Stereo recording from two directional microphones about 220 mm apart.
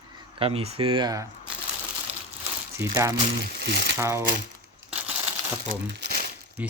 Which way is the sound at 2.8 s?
15° right (ahead or behind).